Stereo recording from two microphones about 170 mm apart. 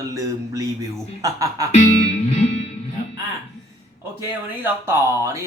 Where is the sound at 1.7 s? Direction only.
45° left (ahead or behind).